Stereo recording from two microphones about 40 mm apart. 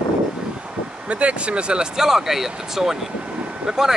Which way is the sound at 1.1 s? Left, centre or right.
Right.